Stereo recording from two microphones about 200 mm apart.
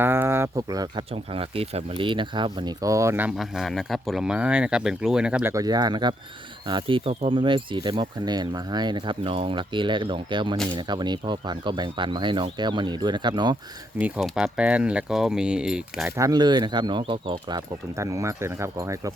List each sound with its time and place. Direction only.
0.0 s speech: 10° right (ahead or behind)
14.0 s speech: 5° right (ahead or behind)
16.1 s speech: 20° right (ahead or behind)